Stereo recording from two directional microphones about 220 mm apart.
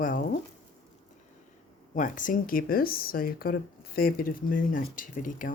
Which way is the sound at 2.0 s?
35° left (ahead or behind).